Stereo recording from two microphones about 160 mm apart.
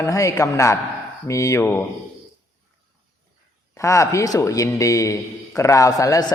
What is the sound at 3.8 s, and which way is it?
A man's voice, 20° left (ahead or behind).